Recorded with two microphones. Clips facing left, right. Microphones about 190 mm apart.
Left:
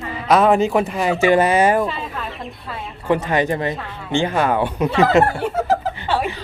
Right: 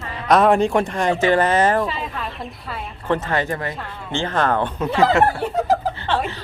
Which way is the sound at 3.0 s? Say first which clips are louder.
Left 3 dB; 15° left (ahead or behind).